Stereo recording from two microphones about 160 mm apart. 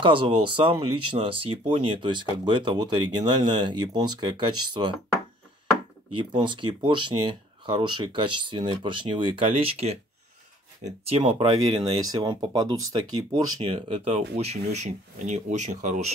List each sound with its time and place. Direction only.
0.0 s speech: 30° right (ahead or behind)
6.1 s speech: 30° right (ahead or behind); by 16.1 s 50° right (ahead or behind)